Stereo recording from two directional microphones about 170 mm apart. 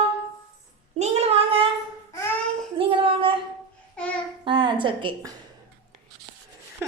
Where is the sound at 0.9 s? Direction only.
40° right (ahead or behind).